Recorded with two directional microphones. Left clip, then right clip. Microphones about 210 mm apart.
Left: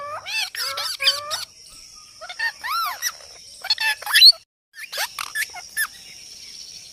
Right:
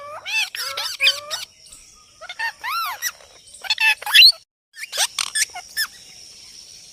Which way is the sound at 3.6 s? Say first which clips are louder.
Right 4 dB; 15° right (ahead or behind).